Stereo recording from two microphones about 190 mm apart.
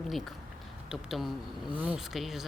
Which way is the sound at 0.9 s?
Centre (ahead or behind).